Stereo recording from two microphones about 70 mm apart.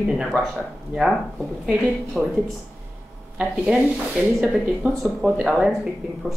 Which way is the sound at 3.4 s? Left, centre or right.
Centre.